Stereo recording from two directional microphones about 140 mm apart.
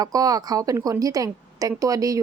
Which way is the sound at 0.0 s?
25° right (ahead or behind).